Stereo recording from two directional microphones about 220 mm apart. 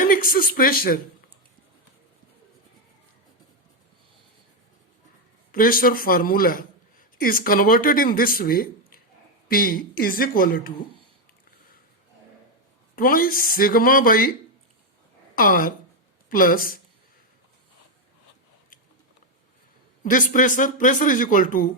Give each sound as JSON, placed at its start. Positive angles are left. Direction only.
{"t": 0.0, "sound": "speech", "side_deg": 40}
{"t": 5.5, "sound": "speech", "side_deg": 40}
{"t": 13.0, "sound": "speech", "side_deg": 40}
{"t": 15.4, "sound": "speech", "side_deg": 40}
{"t": 20.0, "sound": "speech", "side_deg": 35}